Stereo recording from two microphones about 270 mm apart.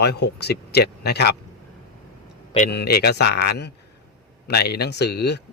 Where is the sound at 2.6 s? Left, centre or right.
Left.